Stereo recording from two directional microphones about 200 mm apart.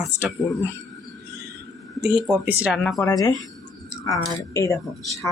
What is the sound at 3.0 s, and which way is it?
Speech, 15° left (ahead or behind).